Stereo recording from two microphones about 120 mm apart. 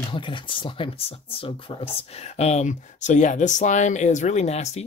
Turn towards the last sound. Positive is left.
turn(degrees=65)  # may be behind; listen again after turning